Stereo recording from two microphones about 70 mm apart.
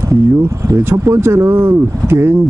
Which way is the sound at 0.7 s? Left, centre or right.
Right.